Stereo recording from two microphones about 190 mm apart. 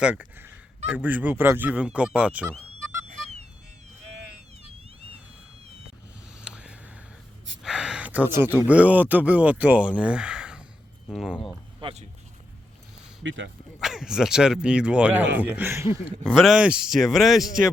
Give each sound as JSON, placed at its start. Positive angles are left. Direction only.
{"t": 0.0, "sound": "speech", "side_deg": -5}
{"t": 0.9, "sound": "fowl", "side_deg": -10}
{"t": 3.1, "sound": "music", "side_deg": -35}
{"t": 6.4, "sound": "a sound", "side_deg": -5}
{"t": 7.6, "sound": "speech", "side_deg": -5}
{"t": 11.8, "sound": "speech", "side_deg": -30}
{"t": 13.2, "sound": "speech", "side_deg": -80}
{"t": 13.7, "sound": "speech", "side_deg": 0}
{"t": 15.4, "sound": "fowl", "side_deg": -10}
{"t": 16.2, "sound": "speech", "side_deg": 0}